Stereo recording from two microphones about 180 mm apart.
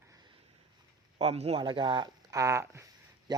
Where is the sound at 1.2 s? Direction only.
35° right (ahead or behind).